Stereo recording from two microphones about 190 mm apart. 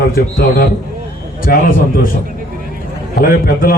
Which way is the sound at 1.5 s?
50° left (ahead or behind).